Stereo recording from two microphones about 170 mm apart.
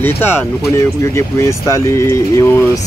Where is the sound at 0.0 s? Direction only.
10° left (ahead or behind).